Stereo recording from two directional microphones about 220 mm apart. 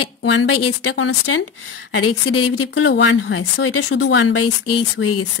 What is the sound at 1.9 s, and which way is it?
A woman's voice, 80° left.